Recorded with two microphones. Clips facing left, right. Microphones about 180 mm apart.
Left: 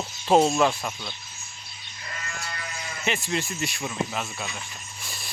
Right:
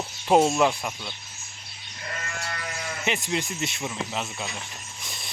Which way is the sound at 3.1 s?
15° right (ahead or behind).